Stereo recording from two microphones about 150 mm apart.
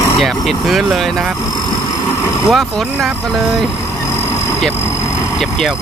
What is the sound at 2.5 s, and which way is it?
Speech, centre (ahead or behind).